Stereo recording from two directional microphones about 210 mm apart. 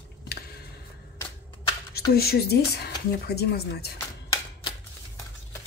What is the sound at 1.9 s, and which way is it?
Speech, 50° left (ahead or behind).